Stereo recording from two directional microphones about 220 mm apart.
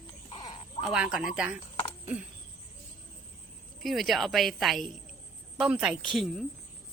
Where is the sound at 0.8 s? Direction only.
5° right (ahead or behind).